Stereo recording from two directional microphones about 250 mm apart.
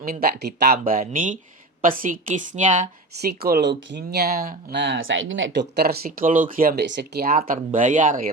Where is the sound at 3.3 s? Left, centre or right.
Right.